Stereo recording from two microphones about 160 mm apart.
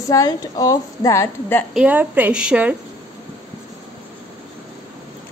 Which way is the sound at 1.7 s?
10° right (ahead or behind).